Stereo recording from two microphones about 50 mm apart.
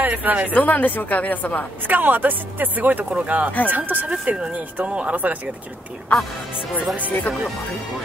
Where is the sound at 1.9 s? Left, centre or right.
Right.